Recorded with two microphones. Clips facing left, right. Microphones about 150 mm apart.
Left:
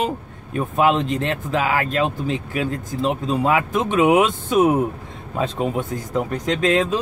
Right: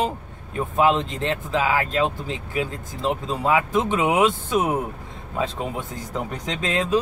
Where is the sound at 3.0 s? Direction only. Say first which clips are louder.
Left 3 dB; 15° left (ahead or behind).